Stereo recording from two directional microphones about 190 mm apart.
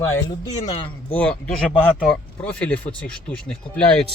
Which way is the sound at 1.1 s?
5° left (ahead or behind).